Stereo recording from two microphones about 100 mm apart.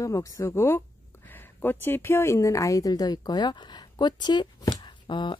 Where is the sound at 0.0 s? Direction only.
35° left (ahead or behind).